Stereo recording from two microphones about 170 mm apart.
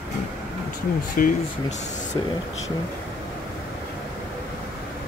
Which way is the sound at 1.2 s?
55° left (ahead or behind).